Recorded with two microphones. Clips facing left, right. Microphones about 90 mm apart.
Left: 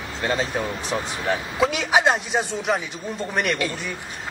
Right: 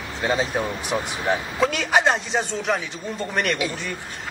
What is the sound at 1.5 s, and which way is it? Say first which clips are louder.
A man's voice: left 1 dB; 5° left (ahead or behind).